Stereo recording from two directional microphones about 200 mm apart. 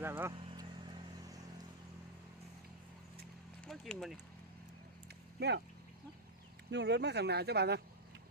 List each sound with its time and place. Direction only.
0.0 s speech: 10° right (ahead or behind)
0.3 s vehicle: 25° right (ahead or behind)
3.7 s speech: centre (ahead or behind)
5.0 s vehicle: 55° right (ahead or behind)
6.7 s speech: 60° right (ahead or behind)